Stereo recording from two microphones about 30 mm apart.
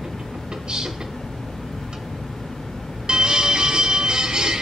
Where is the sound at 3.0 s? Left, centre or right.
Right.